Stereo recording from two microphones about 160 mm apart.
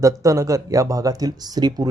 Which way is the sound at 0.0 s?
20° right (ahead or behind).